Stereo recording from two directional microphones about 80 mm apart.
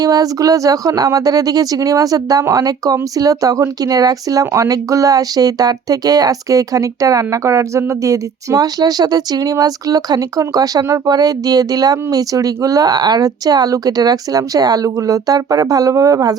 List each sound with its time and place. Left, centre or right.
0.0 s speech: right